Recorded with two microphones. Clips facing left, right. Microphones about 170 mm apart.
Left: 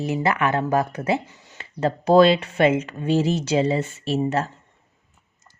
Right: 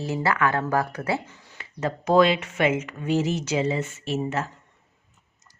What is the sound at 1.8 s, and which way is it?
Speech, 30° left (ahead or behind).